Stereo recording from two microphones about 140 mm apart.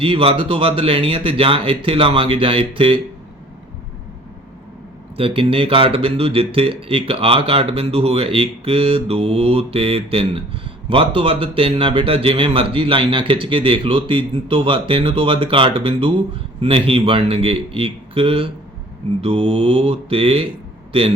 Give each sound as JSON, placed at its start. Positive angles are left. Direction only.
{"t": 0.0, "sound": "speech", "side_deg": -40}
{"t": 5.1, "sound": "speech", "side_deg": -40}
{"t": 19.2, "sound": "mantra", "side_deg": -45}